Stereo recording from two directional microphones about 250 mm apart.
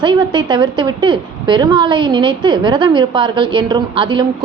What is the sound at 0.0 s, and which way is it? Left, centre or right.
A woman's voice, centre.